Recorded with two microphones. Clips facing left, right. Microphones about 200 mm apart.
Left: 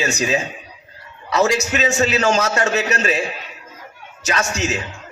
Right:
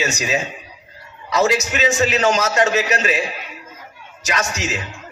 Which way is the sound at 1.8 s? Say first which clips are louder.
Right 1 dB; 40° left (ahead or behind).